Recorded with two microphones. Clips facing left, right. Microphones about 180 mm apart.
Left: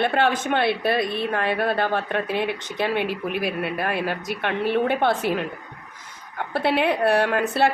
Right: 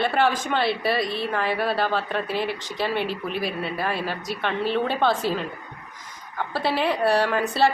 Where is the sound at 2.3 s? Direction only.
20° left (ahead or behind).